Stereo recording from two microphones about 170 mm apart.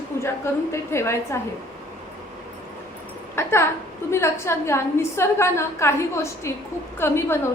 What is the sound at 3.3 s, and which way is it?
A woman's voice, 15° left (ahead or behind).